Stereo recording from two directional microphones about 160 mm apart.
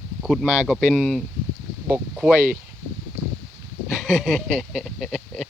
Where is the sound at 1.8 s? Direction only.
15° right (ahead or behind).